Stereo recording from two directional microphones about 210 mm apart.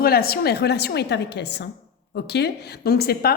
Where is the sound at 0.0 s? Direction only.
45° left (ahead or behind).